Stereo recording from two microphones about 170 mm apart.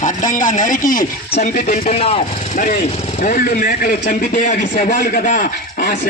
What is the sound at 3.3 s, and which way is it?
A man's voice, 65° left (ahead or behind).